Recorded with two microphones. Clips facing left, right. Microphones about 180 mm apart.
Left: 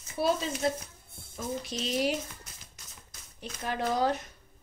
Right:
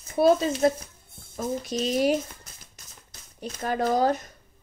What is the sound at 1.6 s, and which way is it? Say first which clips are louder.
Speech: right 6 dB; 45° right (ahead or behind).